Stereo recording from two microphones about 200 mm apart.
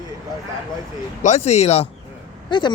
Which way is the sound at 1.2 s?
35° left (ahead or behind).